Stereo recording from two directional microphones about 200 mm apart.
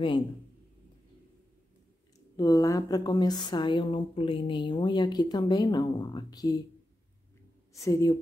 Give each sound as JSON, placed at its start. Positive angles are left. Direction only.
{"t": 2.3, "sound": "a woman's voice", "side_deg": 20}
{"t": 7.7, "sound": "speech", "side_deg": 15}